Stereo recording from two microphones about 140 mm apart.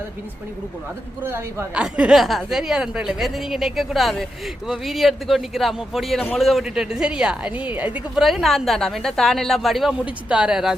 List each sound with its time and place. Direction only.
1.2 s speech: 15° right (ahead or behind)
1.8 s a woman's voice: 5° right (ahead or behind)